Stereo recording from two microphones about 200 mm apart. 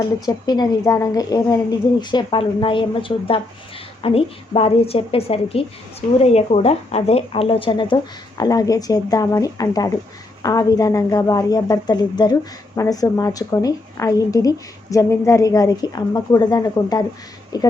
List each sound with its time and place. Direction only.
0.0 s a woman's voice: 20° left (ahead or behind)